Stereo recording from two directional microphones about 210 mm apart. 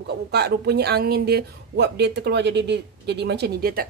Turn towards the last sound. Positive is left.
turn(degrees=-45)  # may be behind; listen again after turning